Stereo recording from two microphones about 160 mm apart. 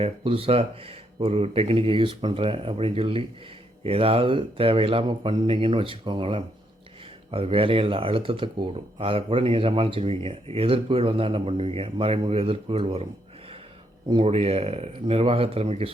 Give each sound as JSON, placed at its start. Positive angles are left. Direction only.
{"t": 0.0, "sound": "speech", "side_deg": -35}
{"t": 14.1, "sound": "speech", "side_deg": -35}